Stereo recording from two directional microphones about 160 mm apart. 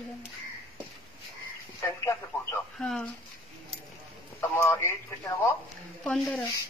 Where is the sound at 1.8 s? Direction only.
15° left (ahead or behind).